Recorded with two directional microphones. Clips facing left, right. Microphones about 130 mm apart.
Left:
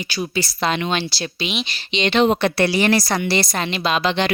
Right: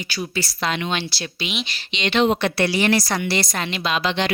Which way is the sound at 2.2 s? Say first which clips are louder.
Left 1 dB; 40° left (ahead or behind).